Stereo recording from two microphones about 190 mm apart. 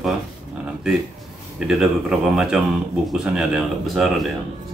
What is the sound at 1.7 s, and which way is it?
Speech, 5° right (ahead or behind).